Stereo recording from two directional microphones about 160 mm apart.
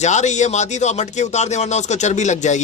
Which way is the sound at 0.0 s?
45° left (ahead or behind).